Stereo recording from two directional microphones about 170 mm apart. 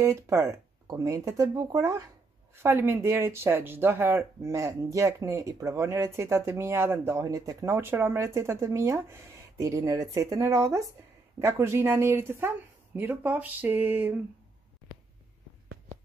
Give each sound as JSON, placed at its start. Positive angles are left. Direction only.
{"t": 0.0, "sound": "speech", "side_deg": -15}